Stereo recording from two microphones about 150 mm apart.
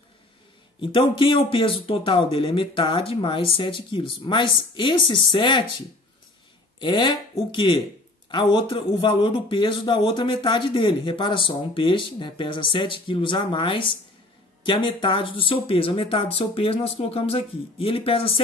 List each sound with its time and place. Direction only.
0.7 s a man's voice: 35° left (ahead or behind)
6.8 s a man's voice: 30° left (ahead or behind)